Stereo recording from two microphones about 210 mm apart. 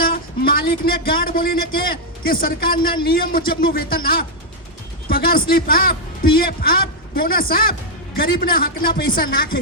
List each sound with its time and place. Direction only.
0.0 s a man's voice: 45° left (ahead or behind)